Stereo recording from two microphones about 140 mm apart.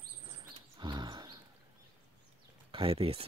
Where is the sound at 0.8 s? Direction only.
30° right (ahead or behind).